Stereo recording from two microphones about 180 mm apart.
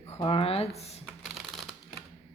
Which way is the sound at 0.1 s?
30° left (ahead or behind).